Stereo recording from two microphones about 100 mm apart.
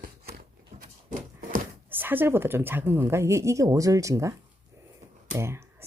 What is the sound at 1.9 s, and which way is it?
A woman's voice, 20° right (ahead or behind).